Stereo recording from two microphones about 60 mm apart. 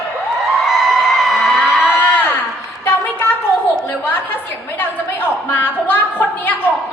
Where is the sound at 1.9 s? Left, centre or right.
Left.